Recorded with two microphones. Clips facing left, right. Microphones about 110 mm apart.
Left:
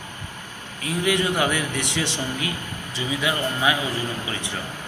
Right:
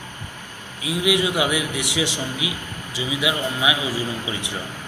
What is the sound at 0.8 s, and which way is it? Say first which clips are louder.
A man's voice: right 2 dB; 10° right (ahead or behind).